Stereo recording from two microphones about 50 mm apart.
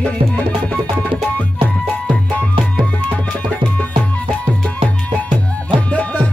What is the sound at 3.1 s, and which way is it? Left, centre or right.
Music, left.